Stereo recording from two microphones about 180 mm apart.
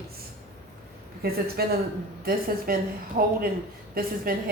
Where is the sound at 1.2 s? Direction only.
55° right (ahead or behind).